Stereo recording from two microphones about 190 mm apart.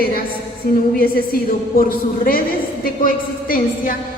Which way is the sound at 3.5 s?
50° left (ahead or behind).